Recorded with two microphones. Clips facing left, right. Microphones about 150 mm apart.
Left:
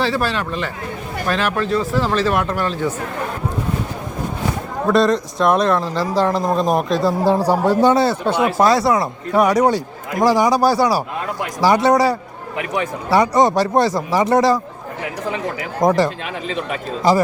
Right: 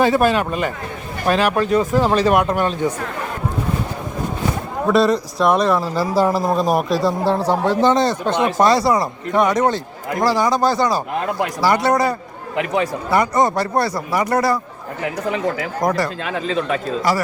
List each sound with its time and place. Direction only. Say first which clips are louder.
0.0 s speech: right 5 dB; 20° right (ahead or behind)
4.9 s a man's voice: even; 5° right (ahead or behind)
7.2 s speech: left 2 dB; 10° left (ahead or behind)
13.1 s speech: left 3 dB; 15° left (ahead or behind)
15.8 s speech: left 5 dB; 20° left (ahead or behind)
16.5 s speech: right 4 dB; 35° right (ahead or behind)
17.0 s speech: left 7 dB; 25° left (ahead or behind)